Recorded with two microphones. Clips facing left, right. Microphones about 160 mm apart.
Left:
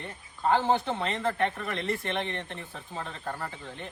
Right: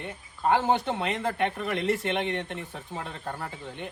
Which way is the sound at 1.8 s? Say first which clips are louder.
Right 4 dB; 5° right (ahead or behind).